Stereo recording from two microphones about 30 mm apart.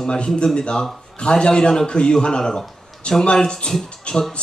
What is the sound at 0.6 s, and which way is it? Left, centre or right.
A man's voice, left.